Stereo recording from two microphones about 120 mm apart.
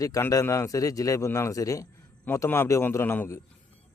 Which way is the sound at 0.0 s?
30° left (ahead or behind).